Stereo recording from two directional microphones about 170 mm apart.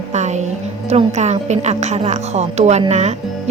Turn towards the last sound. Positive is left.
turn(degrees=-40)  # may be behind; listen again after turning